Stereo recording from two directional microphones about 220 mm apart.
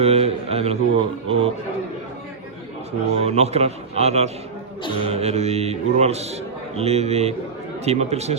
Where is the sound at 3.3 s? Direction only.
30° right (ahead or behind).